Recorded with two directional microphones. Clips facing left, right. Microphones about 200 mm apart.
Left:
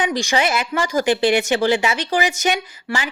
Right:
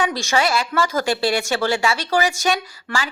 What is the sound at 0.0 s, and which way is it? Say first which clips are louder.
A woman's voice: left 1 dB; 15° left (ahead or behind).